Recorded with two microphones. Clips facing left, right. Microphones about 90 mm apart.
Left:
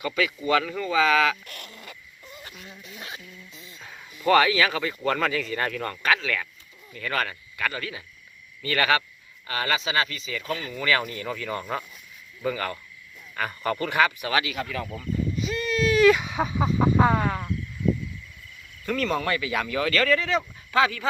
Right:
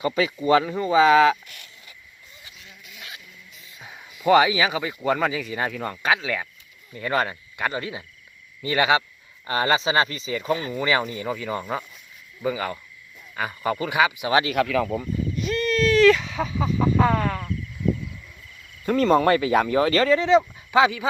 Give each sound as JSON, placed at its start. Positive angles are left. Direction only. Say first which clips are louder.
{"t": 0.0, "sound": "speech", "louder": "right 4 dB", "side_deg": -30}
{"t": 1.5, "sound": "a sound", "louder": "left 5 dB", "side_deg": 50}
{"t": 2.8, "sound": "music", "louder": "left 2 dB", "side_deg": 35}
{"t": 3.8, "sound": "speech", "louder": "right 3 dB", "side_deg": -15}
{"t": 9.5, "sound": "speech", "louder": "right 5 dB", "side_deg": -30}
{"t": 14.5, "sound": "speech", "louder": "right 9 dB", "side_deg": -50}
{"t": 15.4, "sound": "a sound", "louder": "right 5 dB", "side_deg": 0}
{"t": 17.0, "sound": "speech", "louder": "even", "side_deg": 15}
{"t": 18.9, "sound": "speech", "louder": "right 8 dB", "side_deg": -35}